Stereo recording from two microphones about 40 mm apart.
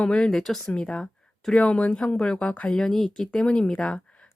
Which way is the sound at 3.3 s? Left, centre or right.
Left.